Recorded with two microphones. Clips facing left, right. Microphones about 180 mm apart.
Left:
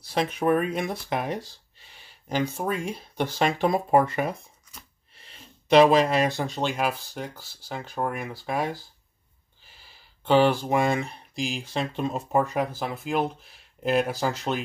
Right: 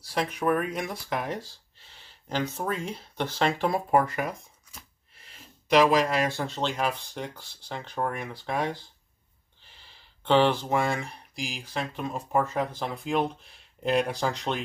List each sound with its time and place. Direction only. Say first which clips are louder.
0.0 s speech: left 3 dB; 20° left (ahead or behind)
5.7 s speech: left 4 dB; 30° left (ahead or behind); by 14.6 s 5° left (ahead or behind)